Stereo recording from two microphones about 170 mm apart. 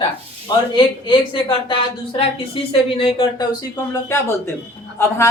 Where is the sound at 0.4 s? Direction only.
30° left (ahead or behind).